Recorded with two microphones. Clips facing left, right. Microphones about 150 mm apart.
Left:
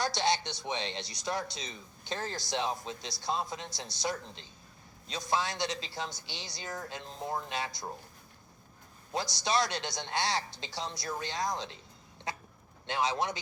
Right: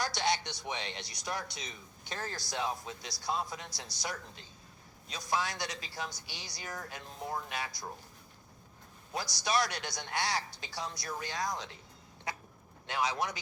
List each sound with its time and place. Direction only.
0.0 s a man's voice: 25° left (ahead or behind)
9.1 s a man's voice: 25° left (ahead or behind)
12.3 s a sound: 25° left (ahead or behind)
12.9 s a man's voice: 25° left (ahead or behind)